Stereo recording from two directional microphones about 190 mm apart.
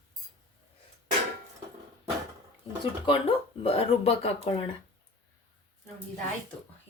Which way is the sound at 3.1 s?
30° left (ahead or behind).